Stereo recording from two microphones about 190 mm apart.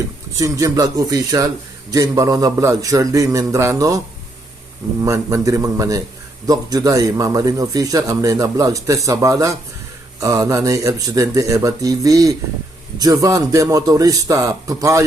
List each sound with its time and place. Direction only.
0.3 s a man's voice: 15° right (ahead or behind)
5.0 s a man's voice: 15° right (ahead or behind)